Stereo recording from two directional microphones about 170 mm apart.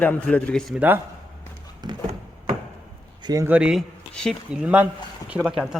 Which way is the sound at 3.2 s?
20° right (ahead or behind).